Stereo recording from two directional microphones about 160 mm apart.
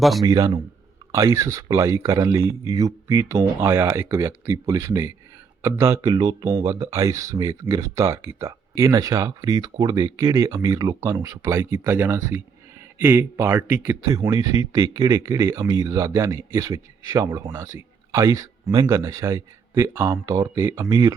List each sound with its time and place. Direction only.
0.2 s speech: 25° right (ahead or behind)